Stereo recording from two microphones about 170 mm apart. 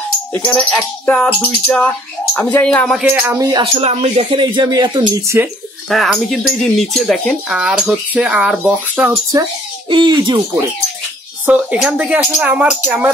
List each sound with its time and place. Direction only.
0.3 s speech: 10° left (ahead or behind)
3.0 s speech: 10° right (ahead or behind)
5.9 s speech: centre (ahead or behind)
9.8 s speech: 30° right (ahead or behind)
11.4 s speech: 5° right (ahead or behind)